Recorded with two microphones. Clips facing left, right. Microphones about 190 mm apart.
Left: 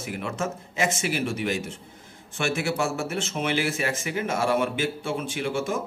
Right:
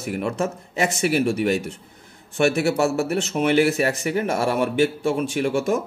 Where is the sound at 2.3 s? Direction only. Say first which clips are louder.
Right 7 dB; 40° right (ahead or behind).